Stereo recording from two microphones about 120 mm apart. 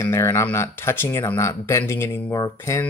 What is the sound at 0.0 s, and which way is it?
Speech, 25° left (ahead or behind).